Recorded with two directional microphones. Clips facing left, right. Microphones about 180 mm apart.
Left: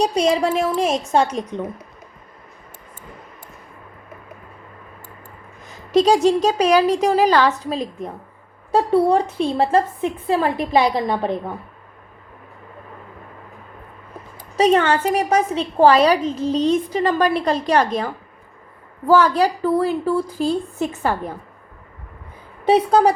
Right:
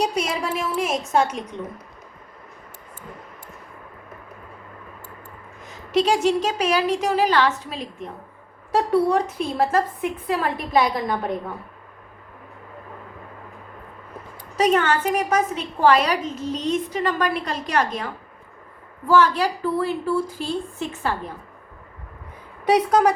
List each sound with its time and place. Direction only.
0.0 s a woman's voice: 30° left (ahead or behind)
5.9 s a woman's voice: 35° left (ahead or behind)
14.5 s a woman's voice: 30° left (ahead or behind); by 21.2 s 45° left (ahead or behind)
22.6 s a woman's voice: 30° left (ahead or behind)